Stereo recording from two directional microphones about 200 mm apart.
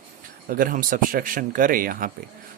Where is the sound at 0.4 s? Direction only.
45° right (ahead or behind).